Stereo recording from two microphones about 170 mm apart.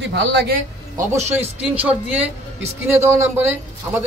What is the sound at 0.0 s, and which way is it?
Speech, 90° right.